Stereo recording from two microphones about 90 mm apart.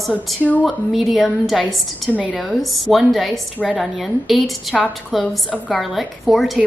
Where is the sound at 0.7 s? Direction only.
Centre (ahead or behind).